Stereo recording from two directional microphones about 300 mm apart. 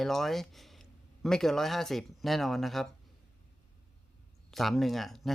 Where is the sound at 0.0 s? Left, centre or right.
Centre.